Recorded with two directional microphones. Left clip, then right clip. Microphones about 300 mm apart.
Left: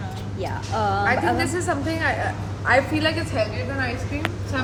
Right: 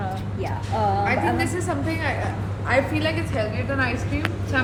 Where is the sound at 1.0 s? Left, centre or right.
Left.